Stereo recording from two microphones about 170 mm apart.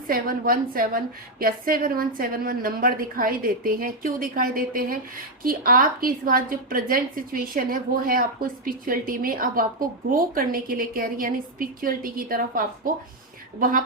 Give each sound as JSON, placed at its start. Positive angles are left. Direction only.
{"t": 0.1, "sound": "a woman's voice", "side_deg": -60}